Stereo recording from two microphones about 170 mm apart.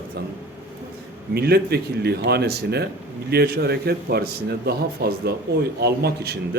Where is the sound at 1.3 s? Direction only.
70° right (ahead or behind).